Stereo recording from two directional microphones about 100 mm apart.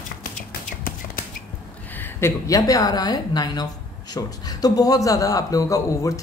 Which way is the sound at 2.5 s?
35° left (ahead or behind).